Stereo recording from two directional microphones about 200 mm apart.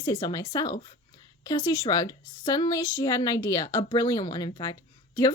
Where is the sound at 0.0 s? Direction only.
20° left (ahead or behind).